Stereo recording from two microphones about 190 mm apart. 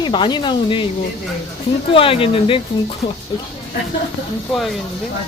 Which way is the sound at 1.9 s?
30° left (ahead or behind).